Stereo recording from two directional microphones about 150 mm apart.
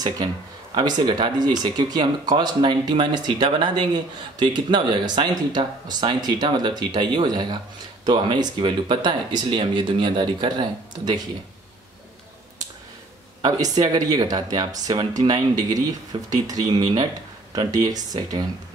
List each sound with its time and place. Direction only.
0.7 s speech: 30° right (ahead or behind)
13.4 s speech: 25° right (ahead or behind)